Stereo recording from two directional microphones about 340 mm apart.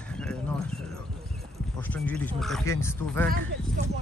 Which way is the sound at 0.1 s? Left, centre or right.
Centre.